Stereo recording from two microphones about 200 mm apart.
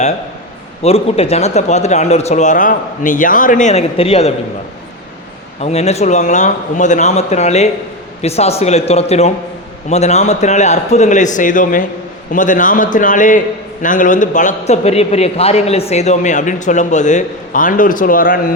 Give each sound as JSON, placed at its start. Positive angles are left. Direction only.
{"t": 0.8, "sound": "a man's voice", "side_deg": 30}
{"t": 5.5, "sound": "a man's voice", "side_deg": 35}